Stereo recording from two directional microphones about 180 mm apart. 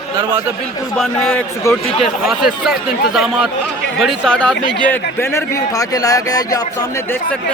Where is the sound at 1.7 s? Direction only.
15° left (ahead or behind).